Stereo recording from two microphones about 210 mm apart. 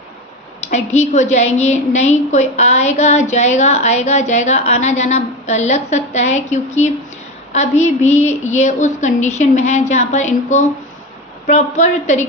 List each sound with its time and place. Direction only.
0.6 s a woman's voice: 35° left (ahead or behind)